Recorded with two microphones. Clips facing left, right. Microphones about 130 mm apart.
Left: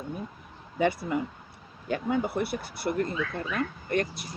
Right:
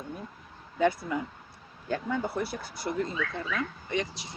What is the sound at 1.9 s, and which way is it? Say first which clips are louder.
Speech: left 3 dB; 65° left (ahead or behind).